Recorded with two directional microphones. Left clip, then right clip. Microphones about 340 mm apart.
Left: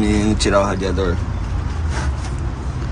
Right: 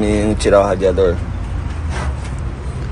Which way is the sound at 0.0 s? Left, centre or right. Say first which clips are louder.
Right 3 dB; centre.